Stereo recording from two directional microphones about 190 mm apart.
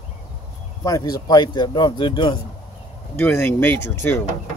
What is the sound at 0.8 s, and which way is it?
Speech, 20° left (ahead or behind).